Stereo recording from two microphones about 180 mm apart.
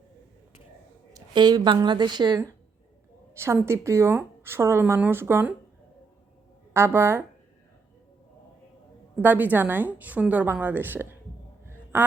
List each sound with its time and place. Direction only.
1.1 s a woman's voice: 25° right (ahead or behind)
6.7 s speech: 15° right (ahead or behind)
9.2 s speech: 10° right (ahead or behind)
11.6 s a sound: 10° right (ahead or behind)